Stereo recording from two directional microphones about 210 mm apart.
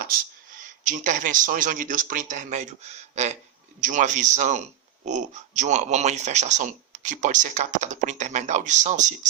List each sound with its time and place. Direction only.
0.6 s a man's voice: 40° right (ahead or behind)